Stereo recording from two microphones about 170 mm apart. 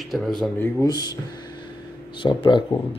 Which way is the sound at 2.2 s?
30° left (ahead or behind).